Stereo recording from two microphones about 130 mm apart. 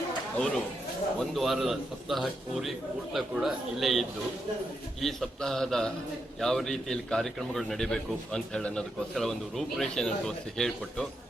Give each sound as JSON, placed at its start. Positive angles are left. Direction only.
{"t": 0.3, "sound": "a man's voice", "side_deg": 5}